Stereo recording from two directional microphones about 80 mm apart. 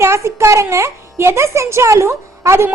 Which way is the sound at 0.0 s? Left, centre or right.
Right.